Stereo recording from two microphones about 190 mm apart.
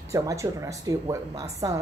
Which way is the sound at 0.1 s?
15° right (ahead or behind).